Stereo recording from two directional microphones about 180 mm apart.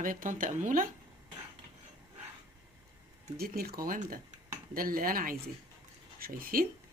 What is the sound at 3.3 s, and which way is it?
Speech, 60° right (ahead or behind).